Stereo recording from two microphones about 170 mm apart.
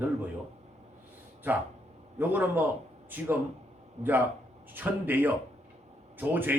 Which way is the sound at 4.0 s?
40° right (ahead or behind).